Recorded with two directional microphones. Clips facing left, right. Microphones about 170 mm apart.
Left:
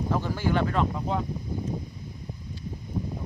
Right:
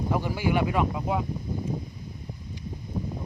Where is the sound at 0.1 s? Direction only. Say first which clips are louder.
Right 1 dB; 10° right (ahead or behind).